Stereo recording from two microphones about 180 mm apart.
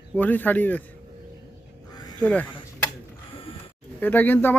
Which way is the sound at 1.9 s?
20° left (ahead or behind).